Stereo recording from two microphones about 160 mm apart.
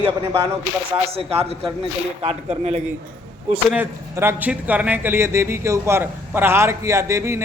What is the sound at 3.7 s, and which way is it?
A man's voice, 15° right (ahead or behind).